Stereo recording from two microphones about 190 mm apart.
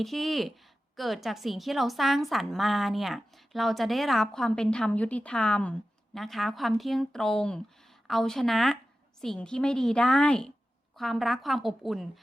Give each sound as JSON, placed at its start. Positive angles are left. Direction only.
{"t": 0.0, "sound": "a woman's voice", "side_deg": 0}